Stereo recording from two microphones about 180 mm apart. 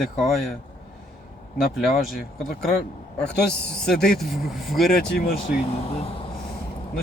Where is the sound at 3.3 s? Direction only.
65° left (ahead or behind).